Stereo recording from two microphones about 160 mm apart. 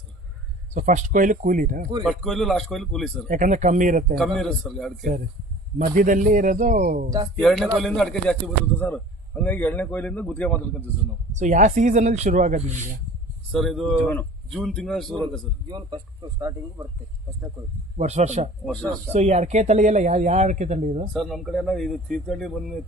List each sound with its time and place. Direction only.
0.7 s speech: 50° right (ahead or behind)
2.0 s speech: centre (ahead or behind)
3.2 s speech: 55° right (ahead or behind)
4.2 s speech: 5° left (ahead or behind)
5.9 s speech: 55° right (ahead or behind)
7.3 s a man's voice: centre (ahead or behind)
11.3 s speech: 50° right (ahead or behind)
13.5 s speech: centre (ahead or behind)
14.1 s speech: 10° left (ahead or behind)
16.4 s speech: 20° right (ahead or behind)
17.9 s speech: 45° right (ahead or behind)
21.1 s speech: centre (ahead or behind)